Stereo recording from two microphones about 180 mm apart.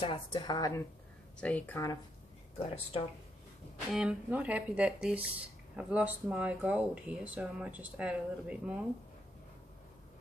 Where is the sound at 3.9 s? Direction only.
5° right (ahead or behind).